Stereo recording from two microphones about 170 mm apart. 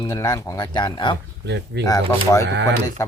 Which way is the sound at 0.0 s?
20° left (ahead or behind).